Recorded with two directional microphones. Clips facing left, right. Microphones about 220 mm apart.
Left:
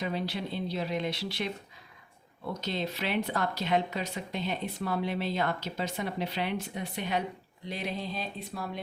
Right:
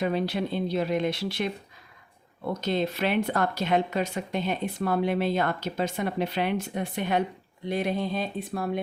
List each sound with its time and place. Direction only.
0.0 s speech: 55° right (ahead or behind)
2.5 s speech: 50° right (ahead or behind)